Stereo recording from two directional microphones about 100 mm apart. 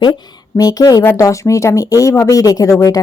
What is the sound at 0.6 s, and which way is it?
Speech, 40° left (ahead or behind).